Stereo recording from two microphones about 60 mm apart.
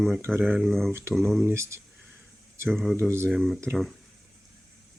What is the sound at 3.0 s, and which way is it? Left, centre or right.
Speech, right.